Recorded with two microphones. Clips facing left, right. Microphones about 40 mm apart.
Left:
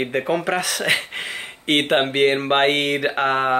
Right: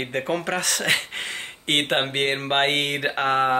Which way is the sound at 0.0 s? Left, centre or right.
Centre.